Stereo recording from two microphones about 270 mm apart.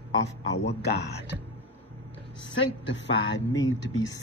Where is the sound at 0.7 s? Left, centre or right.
Left.